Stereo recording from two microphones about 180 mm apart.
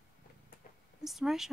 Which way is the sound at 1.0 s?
Centre (ahead or behind).